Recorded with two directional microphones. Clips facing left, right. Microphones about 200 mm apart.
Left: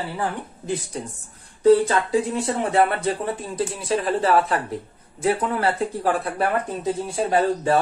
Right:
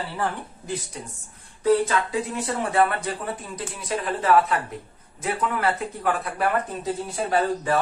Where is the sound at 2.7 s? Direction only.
30° left (ahead or behind).